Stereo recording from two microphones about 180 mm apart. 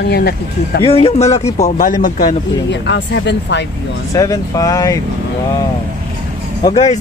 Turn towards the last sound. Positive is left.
turn(degrees=35)  # may be behind; listen again after turning